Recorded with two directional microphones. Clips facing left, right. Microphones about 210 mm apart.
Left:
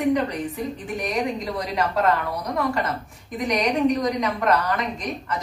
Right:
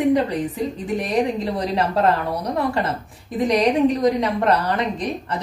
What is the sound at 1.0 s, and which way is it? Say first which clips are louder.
A woman's voice: right 4 dB; 30° right (ahead or behind).